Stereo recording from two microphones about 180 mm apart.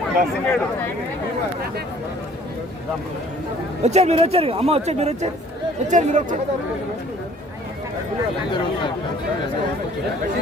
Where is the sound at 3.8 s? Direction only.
40° right (ahead or behind).